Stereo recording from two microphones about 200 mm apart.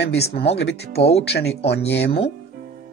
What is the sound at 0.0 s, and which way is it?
Speech, 55° left (ahead or behind).